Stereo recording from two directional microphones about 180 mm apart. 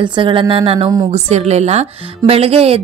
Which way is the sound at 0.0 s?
25° right (ahead or behind).